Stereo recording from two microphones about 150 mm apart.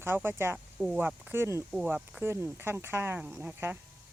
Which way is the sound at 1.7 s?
5° right (ahead or behind).